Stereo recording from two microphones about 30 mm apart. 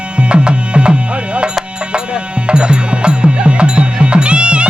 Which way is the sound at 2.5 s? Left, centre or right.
Right.